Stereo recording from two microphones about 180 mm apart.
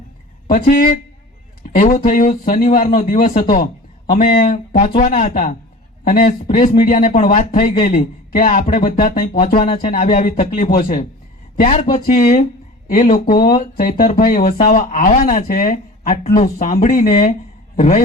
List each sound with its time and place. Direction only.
0.4 s a man's voice: 50° left (ahead or behind)
5.0 s a man's voice: 40° left (ahead or behind)
9.6 s speech: 30° left (ahead or behind)
9.9 s a man's voice: 45° left (ahead or behind)
11.6 s speech: 35° left (ahead or behind)
12.9 s a man's voice: 50° left (ahead or behind)
16.2 s a man's voice: 35° left (ahead or behind); by 17.3 s 50° left (ahead or behind)
17.7 s a man's voice: 35° left (ahead or behind)